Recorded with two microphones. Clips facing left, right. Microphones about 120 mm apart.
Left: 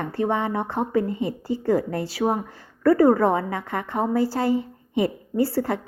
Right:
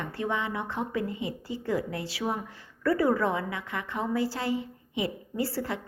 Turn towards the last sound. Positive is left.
turn(degrees=50)  # may be behind; listen again after turning